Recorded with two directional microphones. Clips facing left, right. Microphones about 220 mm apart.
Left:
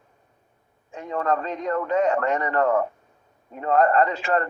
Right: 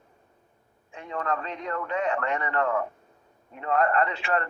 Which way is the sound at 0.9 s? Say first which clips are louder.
Left 6 dB; 40° left (ahead or behind).